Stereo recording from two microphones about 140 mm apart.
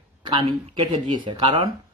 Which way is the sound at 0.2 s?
40° right (ahead or behind).